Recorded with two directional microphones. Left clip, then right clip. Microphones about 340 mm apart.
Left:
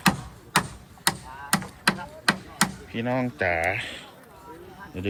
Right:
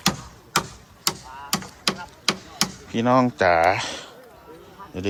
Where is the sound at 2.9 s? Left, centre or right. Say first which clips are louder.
Right 8 dB; right.